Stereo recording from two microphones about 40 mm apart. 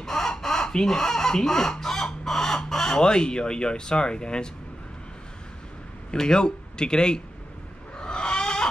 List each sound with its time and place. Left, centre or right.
0.0 s a sound: centre
0.8 s speech: centre
6.1 s speech: centre
8.0 s chicken: left